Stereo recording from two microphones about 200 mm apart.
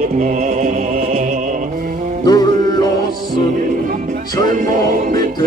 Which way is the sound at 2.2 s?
20° left (ahead or behind).